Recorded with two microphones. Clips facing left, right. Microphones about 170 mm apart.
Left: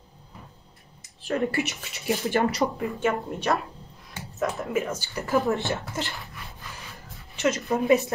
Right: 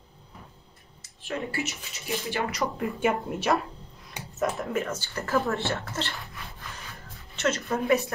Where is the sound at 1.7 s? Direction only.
65° left (ahead or behind).